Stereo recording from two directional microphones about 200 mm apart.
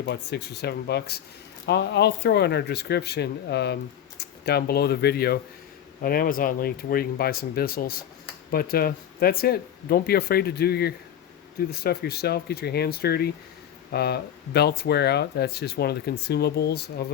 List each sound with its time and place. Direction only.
0.0 s speech: 60° left (ahead or behind)